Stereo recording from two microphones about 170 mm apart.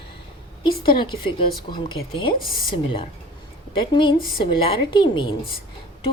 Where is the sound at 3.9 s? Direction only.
30° left (ahead or behind).